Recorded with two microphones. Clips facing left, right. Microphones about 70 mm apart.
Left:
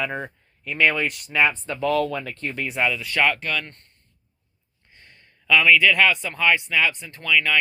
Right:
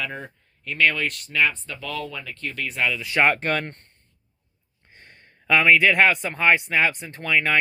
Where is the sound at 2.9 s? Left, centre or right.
Centre.